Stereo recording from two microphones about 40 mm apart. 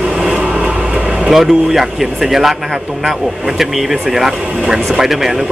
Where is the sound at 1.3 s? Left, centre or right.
Centre.